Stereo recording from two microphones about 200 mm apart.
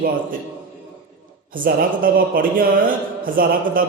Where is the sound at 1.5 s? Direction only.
45° right (ahead or behind).